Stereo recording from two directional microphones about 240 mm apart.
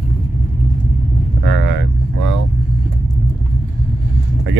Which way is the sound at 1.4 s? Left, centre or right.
Right.